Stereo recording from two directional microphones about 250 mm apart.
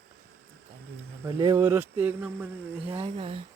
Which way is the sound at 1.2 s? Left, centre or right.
Centre.